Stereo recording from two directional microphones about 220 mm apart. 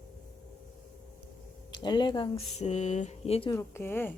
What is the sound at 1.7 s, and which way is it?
Speech, 20° left (ahead or behind).